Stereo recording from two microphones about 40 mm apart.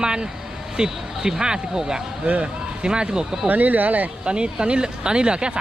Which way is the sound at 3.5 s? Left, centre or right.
Right.